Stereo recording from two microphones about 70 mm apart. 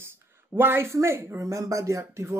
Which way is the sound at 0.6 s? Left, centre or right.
Right.